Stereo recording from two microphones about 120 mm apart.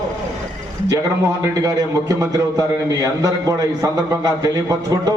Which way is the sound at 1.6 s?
30° right (ahead or behind).